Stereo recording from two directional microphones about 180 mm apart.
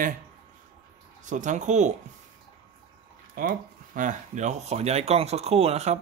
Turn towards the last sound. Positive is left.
turn(degrees=-35)  # may be behind; listen again after turning